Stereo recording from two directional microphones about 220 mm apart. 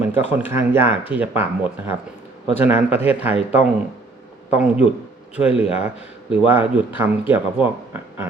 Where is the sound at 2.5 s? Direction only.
5° right (ahead or behind).